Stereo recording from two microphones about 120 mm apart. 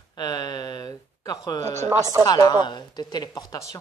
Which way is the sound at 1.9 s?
30° right (ahead or behind).